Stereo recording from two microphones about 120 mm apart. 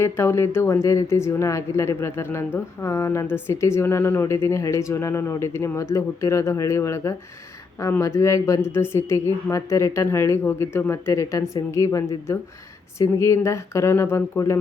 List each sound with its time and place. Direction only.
0.0 s speech: 20° left (ahead or behind)